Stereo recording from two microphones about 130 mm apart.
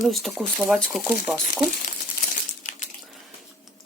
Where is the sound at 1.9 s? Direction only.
85° left.